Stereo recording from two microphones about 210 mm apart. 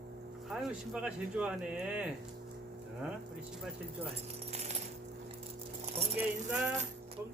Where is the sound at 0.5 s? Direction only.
5° right (ahead or behind).